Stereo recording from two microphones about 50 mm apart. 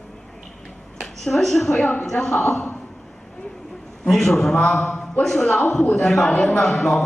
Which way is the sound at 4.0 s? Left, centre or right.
Centre.